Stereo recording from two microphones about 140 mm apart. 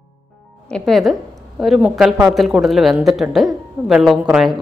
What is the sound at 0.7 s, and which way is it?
Speech, 5° left (ahead or behind).